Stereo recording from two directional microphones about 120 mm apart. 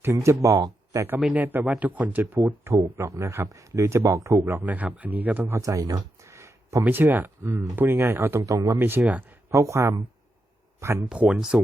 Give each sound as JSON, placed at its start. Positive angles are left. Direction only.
{"t": 0.0, "sound": "speech", "side_deg": -25}
{"t": 1.2, "sound": "speech", "side_deg": -10}
{"t": 8.8, "sound": "speech", "side_deg": -15}
{"t": 9.5, "sound": "speech", "side_deg": -25}
{"t": 11.1, "sound": "speech", "side_deg": -10}